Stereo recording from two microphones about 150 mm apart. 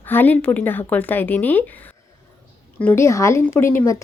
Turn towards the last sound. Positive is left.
turn(degrees=20)  # may be behind; listen again after turning